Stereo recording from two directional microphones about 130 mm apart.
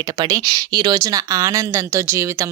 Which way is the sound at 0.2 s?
30° right (ahead or behind).